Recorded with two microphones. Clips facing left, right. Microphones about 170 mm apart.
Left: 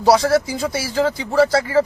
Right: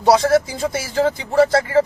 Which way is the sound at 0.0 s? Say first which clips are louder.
Right 1 dB; 20° right (ahead or behind).